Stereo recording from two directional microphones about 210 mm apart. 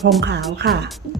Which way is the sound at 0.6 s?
50° right (ahead or behind).